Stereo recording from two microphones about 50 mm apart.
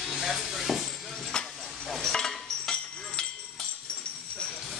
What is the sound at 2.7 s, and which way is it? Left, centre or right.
Music, centre.